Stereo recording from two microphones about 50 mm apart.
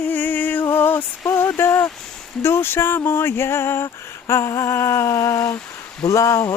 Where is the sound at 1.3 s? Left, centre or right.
Left.